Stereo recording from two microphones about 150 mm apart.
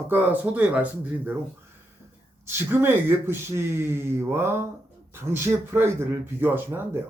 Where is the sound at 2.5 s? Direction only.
15° right (ahead or behind).